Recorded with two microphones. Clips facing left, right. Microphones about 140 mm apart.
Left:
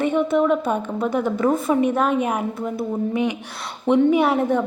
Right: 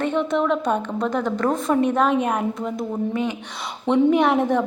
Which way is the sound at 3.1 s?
15° left (ahead or behind).